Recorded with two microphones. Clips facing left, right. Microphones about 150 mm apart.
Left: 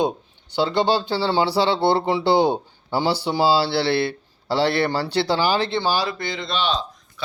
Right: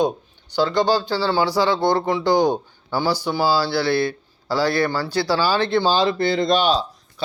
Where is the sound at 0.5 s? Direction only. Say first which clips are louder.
Right 1 dB; 25° left (ahead or behind).